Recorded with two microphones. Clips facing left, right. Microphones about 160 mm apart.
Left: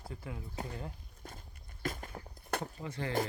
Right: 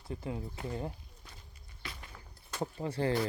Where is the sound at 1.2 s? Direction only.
45° left (ahead or behind).